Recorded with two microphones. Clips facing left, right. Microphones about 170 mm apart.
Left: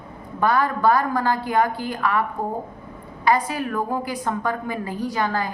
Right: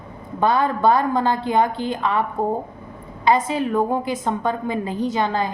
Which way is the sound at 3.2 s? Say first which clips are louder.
Right 2 dB; 20° right (ahead or behind).